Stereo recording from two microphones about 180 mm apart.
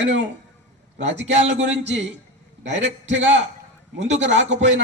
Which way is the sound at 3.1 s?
90° right.